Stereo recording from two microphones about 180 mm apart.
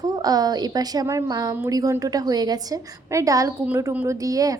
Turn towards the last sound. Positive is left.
turn(degrees=-20)  # may be behind; listen again after turning